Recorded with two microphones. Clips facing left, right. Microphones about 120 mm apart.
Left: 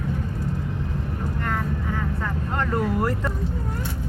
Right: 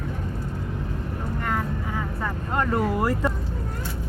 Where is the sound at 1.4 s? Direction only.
5° right (ahead or behind).